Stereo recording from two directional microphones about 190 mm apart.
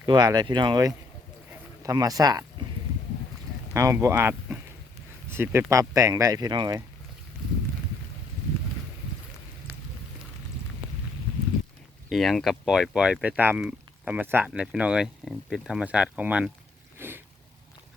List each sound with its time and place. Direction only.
0.0 s speech: 20° right (ahead or behind)
3.8 s speech: 15° right (ahead or behind)
12.0 s speech: centre (ahead or behind)
17.0 s a sound: 10° right (ahead or behind)